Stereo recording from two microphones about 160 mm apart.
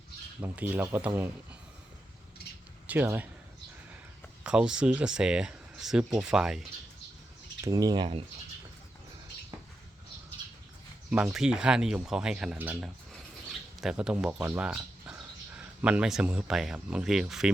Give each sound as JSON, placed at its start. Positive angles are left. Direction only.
{"t": 0.4, "sound": "speech", "side_deg": -15}
{"t": 2.8, "sound": "speech", "side_deg": -10}
{"t": 4.4, "sound": "speech", "side_deg": -5}
{"t": 7.6, "sound": "speech", "side_deg": -25}
{"t": 11.1, "sound": "speech", "side_deg": -5}